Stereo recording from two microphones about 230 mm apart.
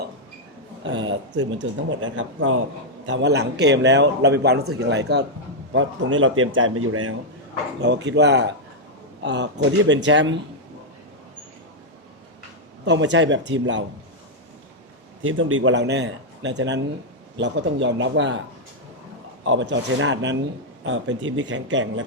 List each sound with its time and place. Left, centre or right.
0.9 s a man's voice: right
7.8 s a man's voice: right
12.8 s a man's voice: right
15.2 s a man's voice: right
19.5 s a man's voice: right